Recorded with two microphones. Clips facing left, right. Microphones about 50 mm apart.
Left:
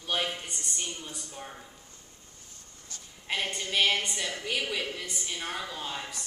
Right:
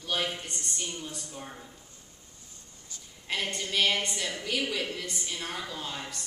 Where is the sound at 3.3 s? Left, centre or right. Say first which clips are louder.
Even; centre.